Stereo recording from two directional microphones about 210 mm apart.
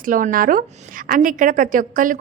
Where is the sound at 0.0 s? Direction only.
40° right (ahead or behind).